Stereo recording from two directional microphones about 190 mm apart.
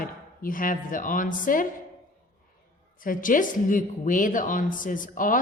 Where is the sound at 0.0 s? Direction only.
45° left (ahead or behind).